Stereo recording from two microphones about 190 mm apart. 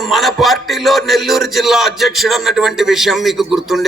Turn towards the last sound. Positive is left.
turn(degrees=0)  # may be behind; listen again after turning